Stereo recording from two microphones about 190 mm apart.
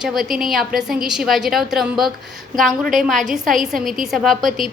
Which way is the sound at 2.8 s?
45° right (ahead or behind).